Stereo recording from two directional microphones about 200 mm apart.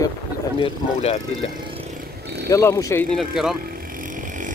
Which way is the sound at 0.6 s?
30° left (ahead or behind).